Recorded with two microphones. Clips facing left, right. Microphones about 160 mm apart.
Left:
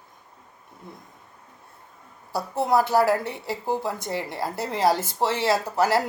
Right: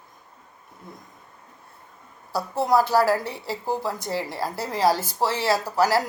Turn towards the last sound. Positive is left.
turn(degrees=25)  # may be behind; listen again after turning